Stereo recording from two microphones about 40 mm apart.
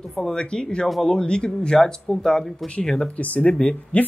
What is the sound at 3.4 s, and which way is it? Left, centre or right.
Speech, left.